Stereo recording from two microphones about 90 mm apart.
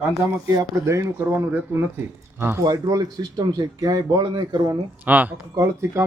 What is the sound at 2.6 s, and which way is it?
Speech, 45° right (ahead or behind).